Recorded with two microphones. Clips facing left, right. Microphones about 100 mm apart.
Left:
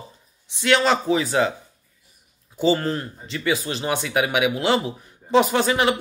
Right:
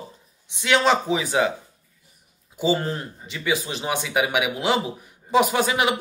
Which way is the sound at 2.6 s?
10° right (ahead or behind).